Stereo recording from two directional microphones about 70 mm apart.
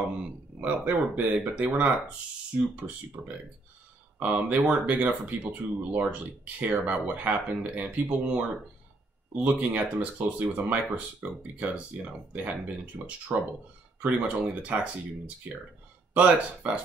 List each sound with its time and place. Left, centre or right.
0.6 s speech: right
4.2 s speech: right
11.2 s speech: right